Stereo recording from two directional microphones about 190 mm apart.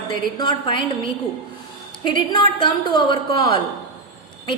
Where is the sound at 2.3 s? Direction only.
25° left (ahead or behind).